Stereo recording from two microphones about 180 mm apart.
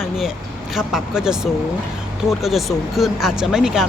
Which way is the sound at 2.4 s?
Centre (ahead or behind).